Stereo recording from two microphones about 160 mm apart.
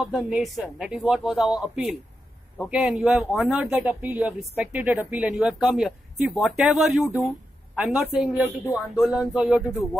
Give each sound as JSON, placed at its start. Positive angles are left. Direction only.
{"t": 0.0, "sound": "speech", "side_deg": -5}